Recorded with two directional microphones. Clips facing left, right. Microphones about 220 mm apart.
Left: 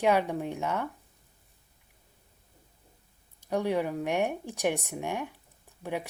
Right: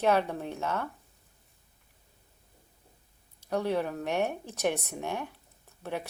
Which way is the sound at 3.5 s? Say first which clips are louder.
Left 1 dB; 15° left (ahead or behind).